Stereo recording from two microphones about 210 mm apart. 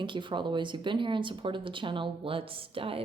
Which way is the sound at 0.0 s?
25° right (ahead or behind).